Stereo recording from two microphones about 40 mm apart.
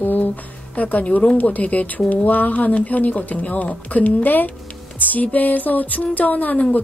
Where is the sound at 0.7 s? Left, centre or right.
Left.